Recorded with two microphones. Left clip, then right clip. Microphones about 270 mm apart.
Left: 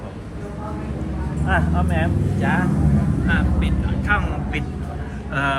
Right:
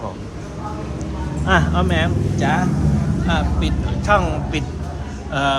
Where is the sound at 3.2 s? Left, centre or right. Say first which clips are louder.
Right 3 dB; centre.